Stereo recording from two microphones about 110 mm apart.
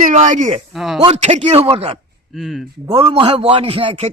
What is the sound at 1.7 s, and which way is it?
Speech, 65° right (ahead or behind).